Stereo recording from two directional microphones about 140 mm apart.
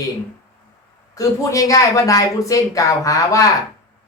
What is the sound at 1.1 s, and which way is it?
Speech, 25° left (ahead or behind).